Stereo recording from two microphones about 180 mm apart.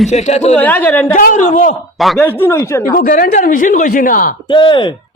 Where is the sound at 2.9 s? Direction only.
50° left (ahead or behind).